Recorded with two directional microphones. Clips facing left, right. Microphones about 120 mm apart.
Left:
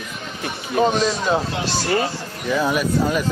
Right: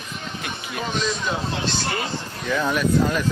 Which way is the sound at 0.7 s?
35° left (ahead or behind).